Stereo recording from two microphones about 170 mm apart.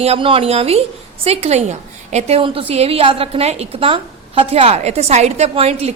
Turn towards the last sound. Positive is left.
turn(degrees=-35)  # may be behind; listen again after turning